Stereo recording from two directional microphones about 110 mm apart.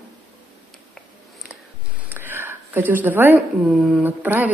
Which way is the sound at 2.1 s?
20° right (ahead or behind).